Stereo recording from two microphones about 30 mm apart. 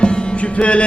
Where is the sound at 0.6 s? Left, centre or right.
Left.